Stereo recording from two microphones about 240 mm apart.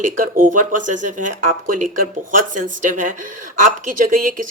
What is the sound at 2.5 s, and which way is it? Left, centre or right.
Speech, right.